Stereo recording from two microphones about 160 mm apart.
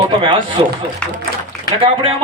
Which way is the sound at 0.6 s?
35° right (ahead or behind).